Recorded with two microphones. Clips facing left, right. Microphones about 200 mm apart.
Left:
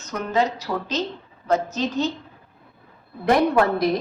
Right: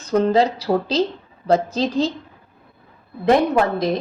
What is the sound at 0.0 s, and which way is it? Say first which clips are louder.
A woman's voice: right 7 dB; 30° right (ahead or behind).